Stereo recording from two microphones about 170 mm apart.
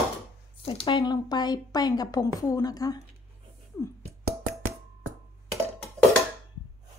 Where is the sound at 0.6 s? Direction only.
30° left (ahead or behind).